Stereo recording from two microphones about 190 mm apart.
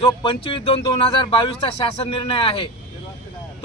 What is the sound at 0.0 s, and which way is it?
Speech, 25° left (ahead or behind).